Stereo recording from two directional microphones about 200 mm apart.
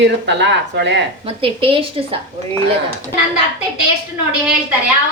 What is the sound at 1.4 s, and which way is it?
Speech, 25° right (ahead or behind).